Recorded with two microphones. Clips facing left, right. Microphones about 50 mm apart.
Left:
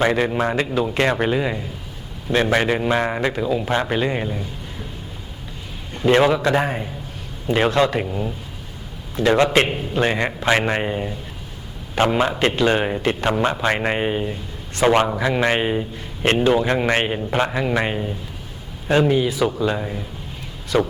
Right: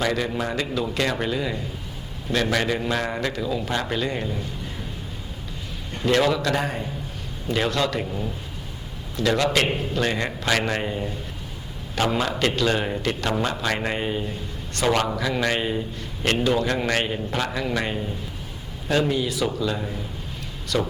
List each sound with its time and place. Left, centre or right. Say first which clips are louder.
0.0 s a man's voice: left 6 dB; left
6.1 s a man's voice: left 5 dB; left
19.3 s speech: left 4 dB; centre
19.5 s a man's voice: left 4 dB; left